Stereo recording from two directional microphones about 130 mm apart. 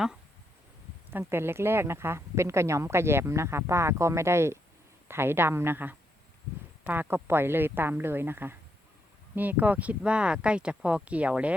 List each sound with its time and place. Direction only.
1.3 s a woman's voice: 20° right (ahead or behind)